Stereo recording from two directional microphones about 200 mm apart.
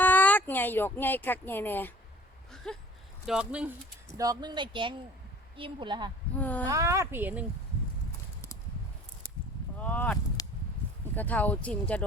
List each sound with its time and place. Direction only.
0.0 s speech: 10° left (ahead or behind)
4.2 s speech: 20° right (ahead or behind)
6.3 s speech: 10° left (ahead or behind)
6.7 s speech: 15° right (ahead or behind)
9.7 s speech: 5° left (ahead or behind)
10.4 s a sound: 20° left (ahead or behind)
11.0 s speech: 10° left (ahead or behind)